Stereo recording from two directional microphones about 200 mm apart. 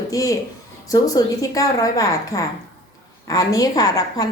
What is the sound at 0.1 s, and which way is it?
A woman's voice, 15° left (ahead or behind).